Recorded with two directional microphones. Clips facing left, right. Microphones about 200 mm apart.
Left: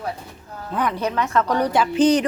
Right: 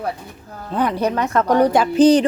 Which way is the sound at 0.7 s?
30° right (ahead or behind).